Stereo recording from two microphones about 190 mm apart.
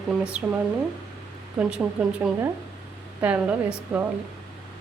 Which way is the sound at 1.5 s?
5° right (ahead or behind).